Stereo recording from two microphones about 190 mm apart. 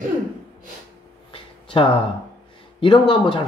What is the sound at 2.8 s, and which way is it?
Speech, 25° left (ahead or behind).